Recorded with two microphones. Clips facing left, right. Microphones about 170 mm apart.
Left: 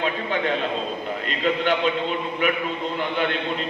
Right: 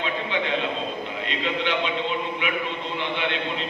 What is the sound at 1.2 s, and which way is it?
A man's voice, 45° left (ahead or behind).